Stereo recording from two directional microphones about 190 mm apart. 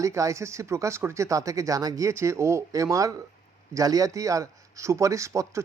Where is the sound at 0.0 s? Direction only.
15° right (ahead or behind).